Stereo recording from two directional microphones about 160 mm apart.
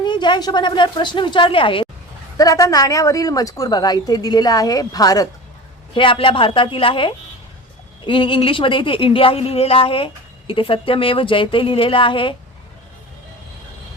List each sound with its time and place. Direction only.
0.0 s speech: 30° left (ahead or behind)
2.4 s a woman's voice: 20° left (ahead or behind)